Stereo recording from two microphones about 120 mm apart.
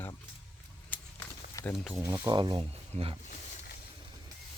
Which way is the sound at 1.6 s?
25° left (ahead or behind).